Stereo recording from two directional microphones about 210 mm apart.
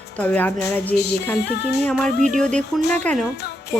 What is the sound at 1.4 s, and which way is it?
Speech, 50° left (ahead or behind).